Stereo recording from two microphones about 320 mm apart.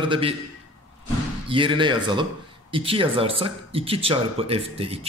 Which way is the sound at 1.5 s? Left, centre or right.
Centre.